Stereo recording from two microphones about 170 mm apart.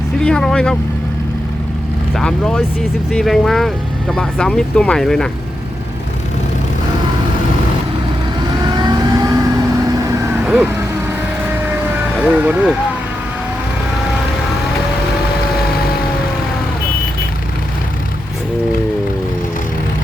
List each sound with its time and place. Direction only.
0.2 s speech: 5° left (ahead or behind)
2.1 s speech: 5° left (ahead or behind)
8.7 s vehicle: 25° right (ahead or behind)
12.2 s speech: 10° right (ahead or behind)